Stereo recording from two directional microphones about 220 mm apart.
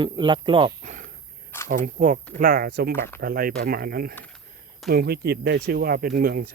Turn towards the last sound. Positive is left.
turn(degrees=-45)  # may be behind; listen again after turning